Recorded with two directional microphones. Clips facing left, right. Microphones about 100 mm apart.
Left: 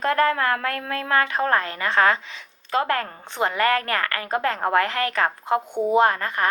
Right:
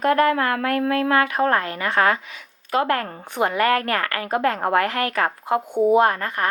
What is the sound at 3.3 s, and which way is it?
A woman's voice, 20° right (ahead or behind).